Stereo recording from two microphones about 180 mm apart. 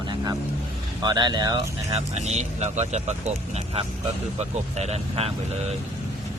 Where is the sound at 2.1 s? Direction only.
40° right (ahead or behind).